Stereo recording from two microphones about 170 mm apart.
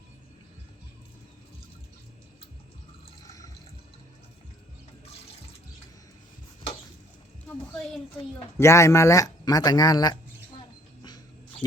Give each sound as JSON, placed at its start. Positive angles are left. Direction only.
{"t": 3.2, "sound": "drip", "side_deg": 20}
{"t": 8.5, "sound": "speech", "side_deg": 15}